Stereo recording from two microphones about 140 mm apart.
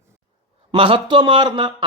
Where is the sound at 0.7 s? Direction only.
40° right (ahead or behind).